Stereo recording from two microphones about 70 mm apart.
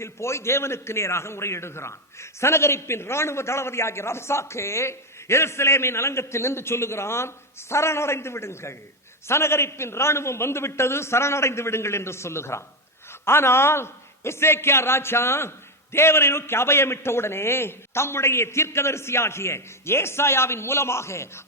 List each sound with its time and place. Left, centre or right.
0.0 s a man's voice: left